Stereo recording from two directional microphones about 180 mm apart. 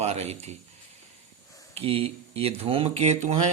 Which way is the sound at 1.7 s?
30° right (ahead or behind).